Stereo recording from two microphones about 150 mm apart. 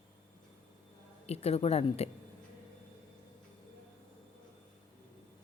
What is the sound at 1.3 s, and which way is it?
Speech, 45° left (ahead or behind).